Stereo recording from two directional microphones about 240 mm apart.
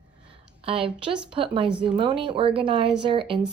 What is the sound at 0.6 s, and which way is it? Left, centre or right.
Speech, right.